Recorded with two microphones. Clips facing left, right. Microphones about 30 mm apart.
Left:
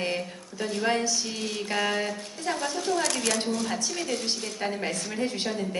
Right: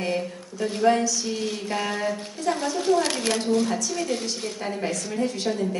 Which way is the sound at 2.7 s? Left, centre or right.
Centre.